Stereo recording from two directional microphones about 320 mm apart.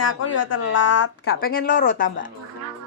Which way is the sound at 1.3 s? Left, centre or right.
Left.